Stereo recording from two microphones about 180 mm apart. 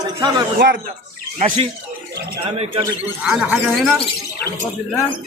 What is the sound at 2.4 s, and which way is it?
Speech, 30° right (ahead or behind).